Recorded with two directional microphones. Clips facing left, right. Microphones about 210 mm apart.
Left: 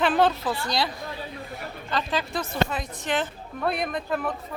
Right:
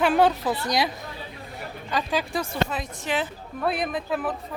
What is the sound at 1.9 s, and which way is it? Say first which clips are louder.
Speech: right 2 dB; 10° right (ahead or behind).